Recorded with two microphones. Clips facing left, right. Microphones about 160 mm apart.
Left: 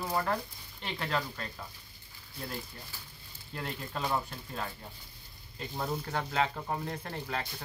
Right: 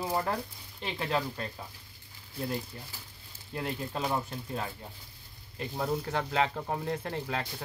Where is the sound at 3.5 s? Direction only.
20° right (ahead or behind).